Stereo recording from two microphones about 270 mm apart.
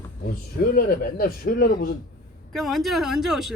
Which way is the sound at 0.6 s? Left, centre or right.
Left.